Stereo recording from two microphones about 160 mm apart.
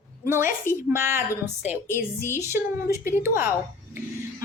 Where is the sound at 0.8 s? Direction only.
15° right (ahead or behind).